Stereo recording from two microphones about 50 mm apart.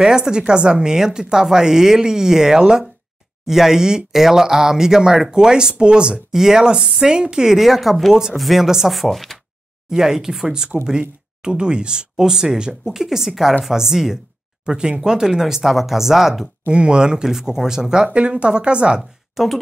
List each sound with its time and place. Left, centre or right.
0.0 s speech: centre
9.8 s speech: centre
16.7 s speech: centre
18.9 s a woman's voice: centre